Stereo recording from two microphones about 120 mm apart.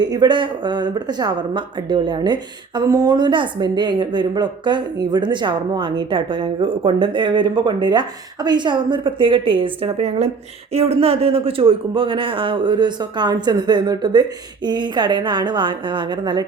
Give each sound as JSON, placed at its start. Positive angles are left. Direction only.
{"t": 0.0, "sound": "a woman's voice", "side_deg": -40}
{"t": 10.0, "sound": "speech", "side_deg": -65}
{"t": 10.7, "sound": "speech", "side_deg": -55}